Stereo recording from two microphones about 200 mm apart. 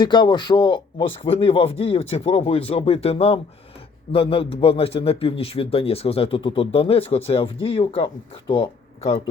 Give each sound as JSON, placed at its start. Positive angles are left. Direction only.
{"t": 0.0, "sound": "speech", "side_deg": 20}